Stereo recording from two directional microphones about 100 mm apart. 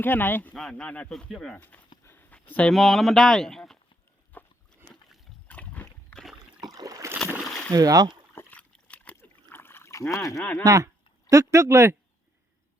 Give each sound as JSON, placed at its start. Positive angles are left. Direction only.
{"t": 0.0, "sound": "speech", "side_deg": 20}
{"t": 0.5, "sound": "speech", "side_deg": 5}
{"t": 1.5, "sound": "speech", "side_deg": 15}
{"t": 2.0, "sound": "a sound", "side_deg": 20}
{"t": 2.5, "sound": "speech", "side_deg": 10}
{"t": 2.7, "sound": "speech", "side_deg": 0}
{"t": 4.3, "sound": "a sound", "side_deg": 15}
{"t": 6.6, "sound": "rowboat", "side_deg": -40}
{"t": 7.7, "sound": "speech", "side_deg": -40}
{"t": 8.4, "sound": "trickle", "side_deg": 15}
{"t": 10.6, "sound": "speech", "side_deg": -35}